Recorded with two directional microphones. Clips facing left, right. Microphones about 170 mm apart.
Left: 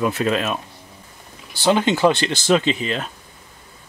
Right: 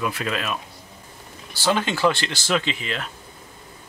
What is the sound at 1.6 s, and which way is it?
Speech, 20° left (ahead or behind).